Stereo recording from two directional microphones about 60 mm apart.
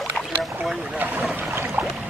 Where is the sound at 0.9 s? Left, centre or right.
Right.